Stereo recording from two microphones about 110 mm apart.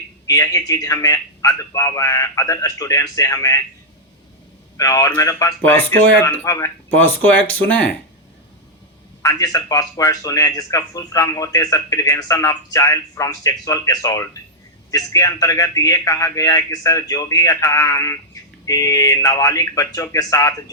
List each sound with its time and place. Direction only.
0.3 s a man's voice: 35° left (ahead or behind)
4.8 s a man's voice: 35° left (ahead or behind)
5.6 s speech: 20° left (ahead or behind)
7.1 s speech: 15° left (ahead or behind)
9.2 s a man's voice: 35° left (ahead or behind)